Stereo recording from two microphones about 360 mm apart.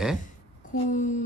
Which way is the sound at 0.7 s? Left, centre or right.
Left.